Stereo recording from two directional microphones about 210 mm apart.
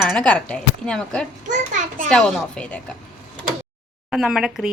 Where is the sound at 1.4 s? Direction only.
35° right (ahead or behind).